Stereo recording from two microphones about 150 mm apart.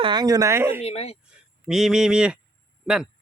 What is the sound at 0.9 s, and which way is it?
Speech, 45° left (ahead or behind).